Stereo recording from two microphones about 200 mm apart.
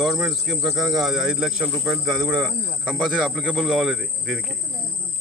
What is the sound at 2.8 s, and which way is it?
Speech, 5° right (ahead or behind).